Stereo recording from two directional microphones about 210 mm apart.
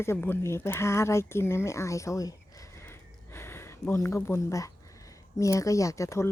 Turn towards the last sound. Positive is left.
turn(degrees=15)  # may be behind; listen again after turning